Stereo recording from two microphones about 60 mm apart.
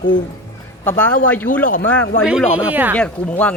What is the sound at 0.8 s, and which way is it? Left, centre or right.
Speech, left.